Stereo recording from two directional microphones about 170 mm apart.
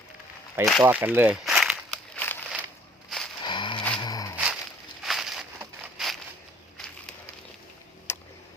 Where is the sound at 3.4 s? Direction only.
25° left (ahead or behind).